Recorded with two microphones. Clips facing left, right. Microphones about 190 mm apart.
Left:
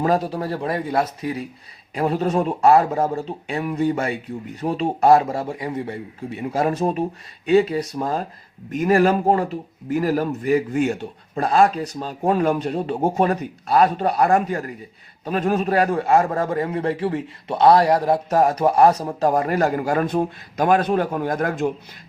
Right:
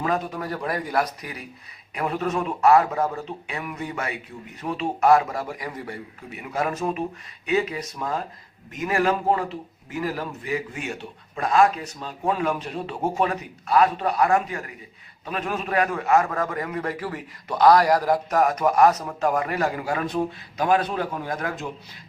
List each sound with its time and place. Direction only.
0.0 s a man's voice: 35° left (ahead or behind); by 21.7 s 50° left (ahead or behind)